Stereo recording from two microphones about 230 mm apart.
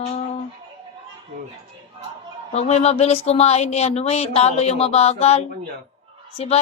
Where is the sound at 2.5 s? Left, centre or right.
Left.